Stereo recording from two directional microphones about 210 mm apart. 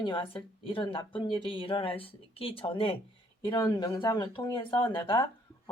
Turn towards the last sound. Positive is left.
turn(degrees=25)  # may be behind; listen again after turning